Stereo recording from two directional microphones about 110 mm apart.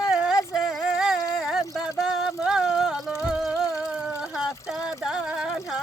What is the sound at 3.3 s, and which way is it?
Music, 5° right (ahead or behind).